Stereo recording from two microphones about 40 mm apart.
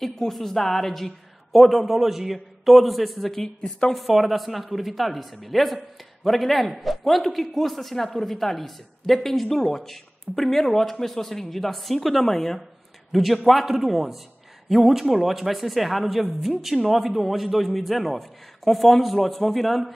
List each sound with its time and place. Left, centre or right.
0.0 s a man's voice: centre
3.4 s a woman's voice: left
3.9 s a man's voice: centre